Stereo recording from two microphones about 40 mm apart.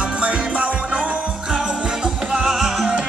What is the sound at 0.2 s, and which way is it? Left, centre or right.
Music, right.